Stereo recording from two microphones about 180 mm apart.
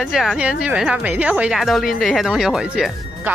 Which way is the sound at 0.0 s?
Centre (ahead or behind).